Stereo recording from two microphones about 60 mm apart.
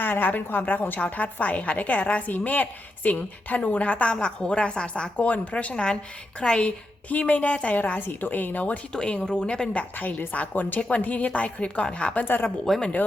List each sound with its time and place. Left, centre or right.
0.0 s a woman's voice: left
8.9 s a woman's voice: centre
12.2 s speech: left
12.7 s a woman's voice: centre